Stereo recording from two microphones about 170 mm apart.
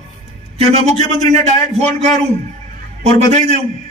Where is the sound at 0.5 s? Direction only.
40° right (ahead or behind).